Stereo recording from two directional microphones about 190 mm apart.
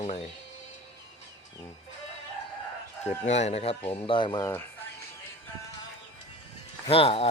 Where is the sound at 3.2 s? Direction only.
35° left (ahead or behind).